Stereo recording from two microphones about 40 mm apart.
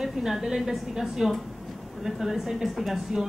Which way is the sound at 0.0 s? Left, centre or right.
Centre.